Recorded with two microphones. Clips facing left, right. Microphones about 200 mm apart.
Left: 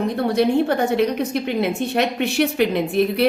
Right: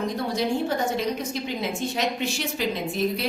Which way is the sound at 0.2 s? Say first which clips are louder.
Left 10 dB; 60° left (ahead or behind).